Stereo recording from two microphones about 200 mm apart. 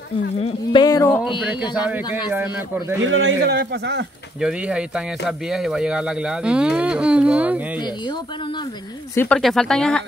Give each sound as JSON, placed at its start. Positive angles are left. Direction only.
{"t": 0.4, "sound": "speech", "side_deg": 30}
{"t": 0.8, "sound": "speech", "side_deg": 15}
{"t": 1.9, "sound": "a man's voice", "side_deg": -10}
{"t": 3.0, "sound": "a man's voice", "side_deg": -75}
{"t": 3.4, "sound": "speech", "side_deg": -55}
{"t": 4.4, "sound": "speech", "side_deg": -5}
{"t": 9.1, "sound": "speech", "side_deg": 10}